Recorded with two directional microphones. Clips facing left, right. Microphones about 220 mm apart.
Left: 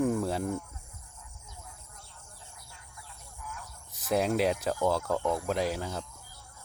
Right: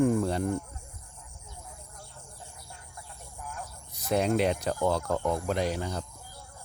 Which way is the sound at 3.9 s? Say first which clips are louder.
Right 1 dB; centre (ahead or behind).